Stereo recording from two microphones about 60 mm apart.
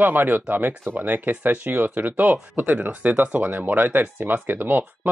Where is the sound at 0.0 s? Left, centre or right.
Right.